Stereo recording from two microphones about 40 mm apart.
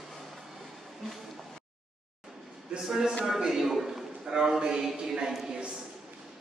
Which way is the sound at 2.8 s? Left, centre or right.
Centre.